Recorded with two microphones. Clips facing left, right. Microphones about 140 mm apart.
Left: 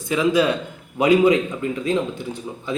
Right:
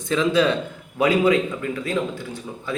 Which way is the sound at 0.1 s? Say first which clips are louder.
Left 1 dB; 10° left (ahead or behind).